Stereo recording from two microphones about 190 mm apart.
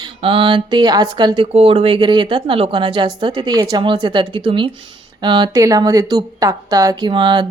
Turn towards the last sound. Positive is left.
turn(degrees=-25)  # may be behind; listen again after turning